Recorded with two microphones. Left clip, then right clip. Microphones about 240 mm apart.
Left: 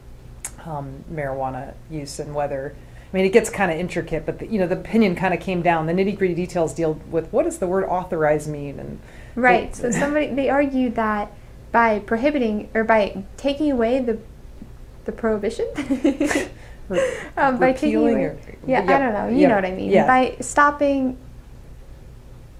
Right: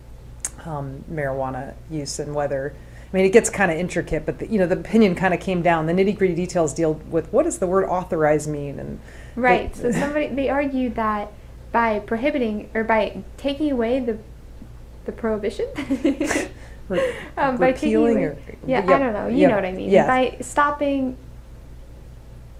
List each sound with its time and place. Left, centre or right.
0.4 s a woman's voice: right
9.3 s a woman's voice: left
17.9 s a woman's voice: right
18.9 s a woman's voice: left